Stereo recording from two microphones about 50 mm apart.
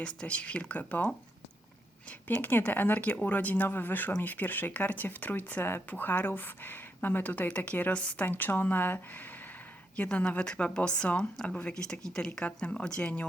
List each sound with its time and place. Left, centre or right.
0.0 s speech: centre
2.2 s speech: left
9.9 s speech: left